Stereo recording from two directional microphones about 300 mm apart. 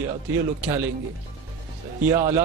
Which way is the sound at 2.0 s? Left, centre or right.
Centre.